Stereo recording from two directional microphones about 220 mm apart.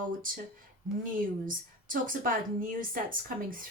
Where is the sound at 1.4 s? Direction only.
40° right (ahead or behind).